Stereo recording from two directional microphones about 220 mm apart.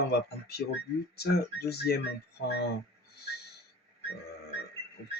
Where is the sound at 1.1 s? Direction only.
45° left (ahead or behind).